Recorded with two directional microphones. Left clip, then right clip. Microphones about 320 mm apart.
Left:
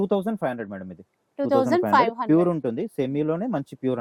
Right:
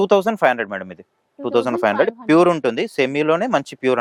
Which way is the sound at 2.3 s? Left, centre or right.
Centre.